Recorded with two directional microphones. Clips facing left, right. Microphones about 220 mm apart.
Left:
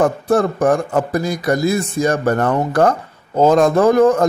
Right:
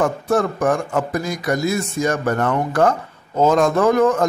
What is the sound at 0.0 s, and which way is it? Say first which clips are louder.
Speech: left 3 dB; 35° left (ahead or behind).